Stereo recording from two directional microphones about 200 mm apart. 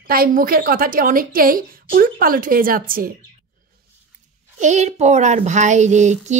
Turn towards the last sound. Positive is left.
turn(degrees=-35)  # may be behind; listen again after turning